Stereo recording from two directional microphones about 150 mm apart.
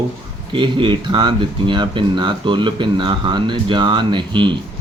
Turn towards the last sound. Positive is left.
turn(degrees=-30)  # may be behind; listen again after turning